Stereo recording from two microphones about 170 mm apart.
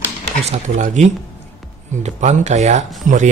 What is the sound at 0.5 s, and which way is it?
Speech, 45° right (ahead or behind).